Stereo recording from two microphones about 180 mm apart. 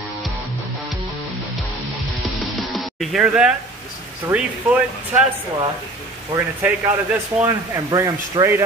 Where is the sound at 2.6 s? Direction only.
Centre (ahead or behind).